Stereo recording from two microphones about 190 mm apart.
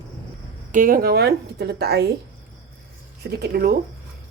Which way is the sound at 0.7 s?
45° right (ahead or behind).